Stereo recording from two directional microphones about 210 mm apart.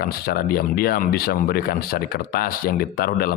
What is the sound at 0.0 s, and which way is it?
Speech, 45° left (ahead or behind).